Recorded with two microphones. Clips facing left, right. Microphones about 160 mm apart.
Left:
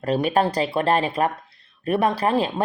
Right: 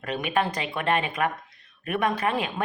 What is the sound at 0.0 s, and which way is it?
Speech, 35° left (ahead or behind).